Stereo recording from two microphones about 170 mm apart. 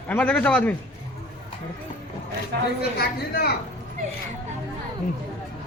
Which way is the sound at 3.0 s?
65° left (ahead or behind).